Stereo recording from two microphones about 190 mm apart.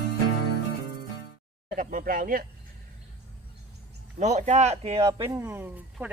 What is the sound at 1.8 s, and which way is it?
Speech, 45° right (ahead or behind).